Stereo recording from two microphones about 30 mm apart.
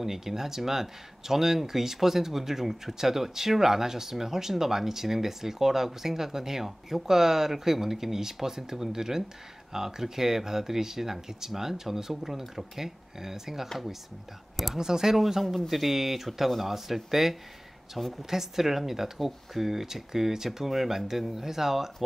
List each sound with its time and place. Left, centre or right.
0.0 s speech: centre
14.8 s a woman's voice: centre
18.3 s speech: centre